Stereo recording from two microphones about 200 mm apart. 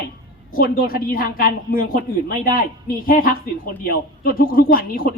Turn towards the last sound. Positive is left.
turn(degrees=45)  # may be behind; listen again after turning